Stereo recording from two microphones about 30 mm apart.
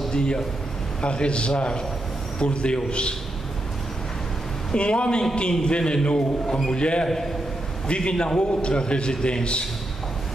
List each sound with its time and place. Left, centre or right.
0.1 s a man's voice: left
4.7 s a man's voice: left